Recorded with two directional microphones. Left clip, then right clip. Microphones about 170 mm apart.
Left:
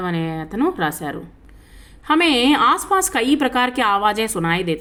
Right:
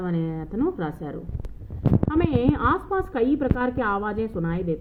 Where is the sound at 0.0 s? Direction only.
25° left (ahead or behind).